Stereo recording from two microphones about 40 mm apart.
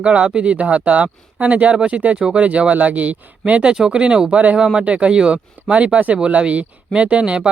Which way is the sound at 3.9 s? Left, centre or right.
Right.